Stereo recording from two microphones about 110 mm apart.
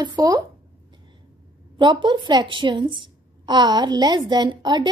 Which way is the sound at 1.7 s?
45° right (ahead or behind).